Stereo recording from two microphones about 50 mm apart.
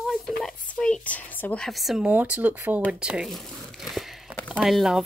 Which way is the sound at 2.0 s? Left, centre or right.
Right.